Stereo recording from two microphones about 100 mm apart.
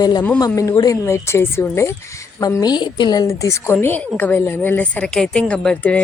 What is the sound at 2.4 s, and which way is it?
Speech, 35° left (ahead or behind).